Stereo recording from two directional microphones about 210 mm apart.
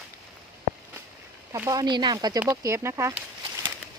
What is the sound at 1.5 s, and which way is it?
Speech, 15° right (ahead or behind).